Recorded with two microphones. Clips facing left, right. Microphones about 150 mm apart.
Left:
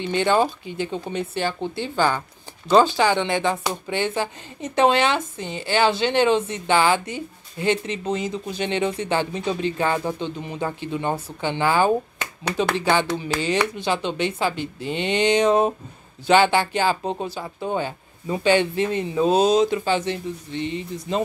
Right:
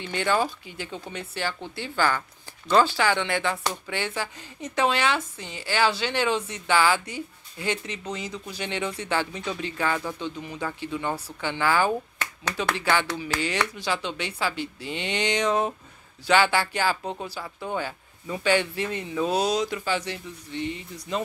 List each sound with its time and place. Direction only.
0.0 s speech: 20° left (ahead or behind)